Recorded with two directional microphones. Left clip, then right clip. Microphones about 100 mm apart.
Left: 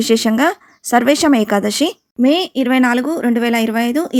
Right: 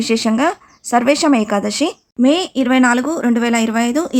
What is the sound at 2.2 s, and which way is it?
Speech, 20° left (ahead or behind).